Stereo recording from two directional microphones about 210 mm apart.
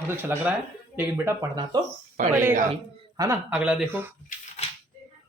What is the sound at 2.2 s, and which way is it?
Speech, 40° right (ahead or behind).